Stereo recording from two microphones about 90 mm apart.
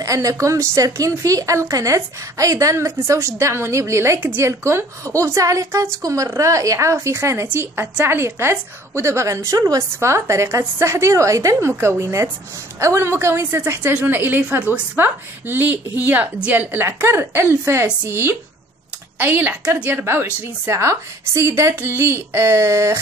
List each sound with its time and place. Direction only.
0.0 s a woman's voice: 40° right (ahead or behind)